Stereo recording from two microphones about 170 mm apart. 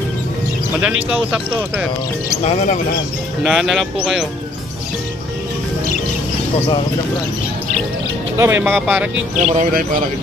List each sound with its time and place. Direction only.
0.7 s speech: 5° right (ahead or behind)
3.4 s speech: centre (ahead or behind)
8.4 s speech: 15° right (ahead or behind)
9.4 s speech: 40° right (ahead or behind)